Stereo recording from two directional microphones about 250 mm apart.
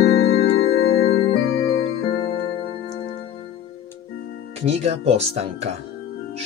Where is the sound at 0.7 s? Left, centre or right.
Left.